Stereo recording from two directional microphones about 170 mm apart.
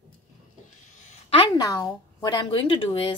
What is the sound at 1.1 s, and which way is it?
A woman's voice, 30° left (ahead or behind).